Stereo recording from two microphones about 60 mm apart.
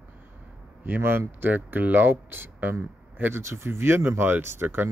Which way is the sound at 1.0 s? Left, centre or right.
Right.